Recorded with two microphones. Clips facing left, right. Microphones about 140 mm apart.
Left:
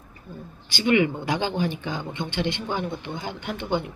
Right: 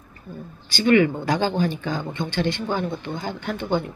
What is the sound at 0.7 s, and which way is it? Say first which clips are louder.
A man's voice: right 4 dB; 15° left (ahead or behind).